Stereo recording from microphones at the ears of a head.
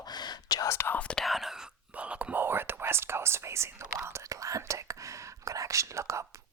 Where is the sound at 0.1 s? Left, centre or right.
Left.